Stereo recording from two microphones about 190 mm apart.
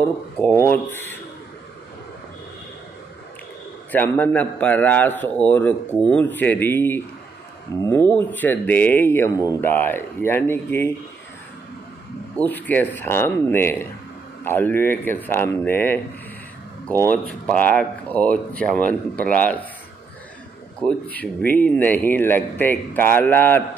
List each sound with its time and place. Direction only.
0.6 s speech: 10° left (ahead or behind)
3.9 s speech: 10° left (ahead or behind)
12.4 s speech: 10° left (ahead or behind)
17.0 s speech: 5° left (ahead or behind)
20.8 s speech: 5° left (ahead or behind)